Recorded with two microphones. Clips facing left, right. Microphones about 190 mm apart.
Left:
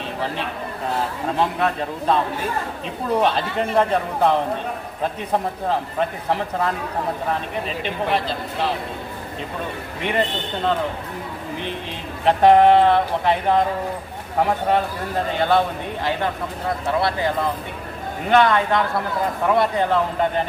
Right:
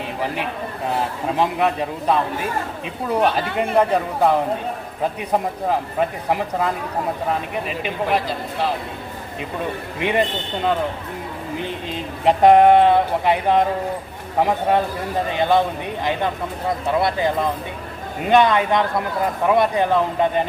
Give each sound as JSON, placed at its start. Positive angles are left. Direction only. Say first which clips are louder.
{"t": 1.4, "sound": "speech", "louder": "right 2 dB", "side_deg": -10}
{"t": 5.3, "sound": "speech", "louder": "right 1 dB", "side_deg": -10}
{"t": 7.8, "sound": "speech", "louder": "right 1 dB", "side_deg": -5}
{"t": 10.0, "sound": "speech", "louder": "right 2 dB", "side_deg": -15}
{"t": 12.2, "sound": "speech", "louder": "right 1 dB", "side_deg": -15}
{"t": 15.4, "sound": "speech", "louder": "right 1 dB", "side_deg": -15}